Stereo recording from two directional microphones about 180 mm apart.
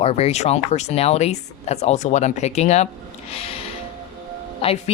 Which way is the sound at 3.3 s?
35° left (ahead or behind).